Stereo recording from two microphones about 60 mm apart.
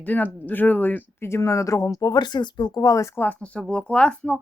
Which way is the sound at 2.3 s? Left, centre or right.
Left.